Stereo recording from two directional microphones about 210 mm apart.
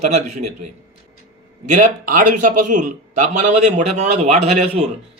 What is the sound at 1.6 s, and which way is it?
Speech, 40° right (ahead or behind).